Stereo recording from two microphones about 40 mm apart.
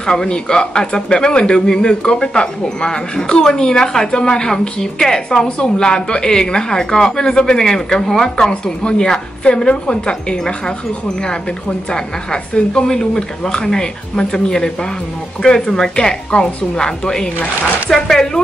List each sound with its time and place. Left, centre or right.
0.0 s a man's voice: centre
11.9 s a man's voice: centre